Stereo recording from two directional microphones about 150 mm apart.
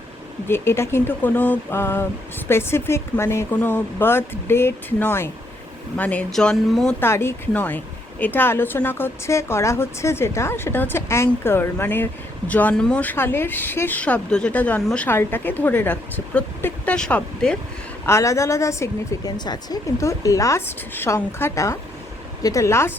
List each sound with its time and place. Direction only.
0.4 s speech: 15° left (ahead or behind)
7.0 s speech: 15° left (ahead or behind)
18.0 s a woman's voice: 20° left (ahead or behind)